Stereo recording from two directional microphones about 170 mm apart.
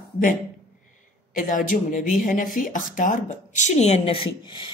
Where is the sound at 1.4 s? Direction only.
50° left (ahead or behind).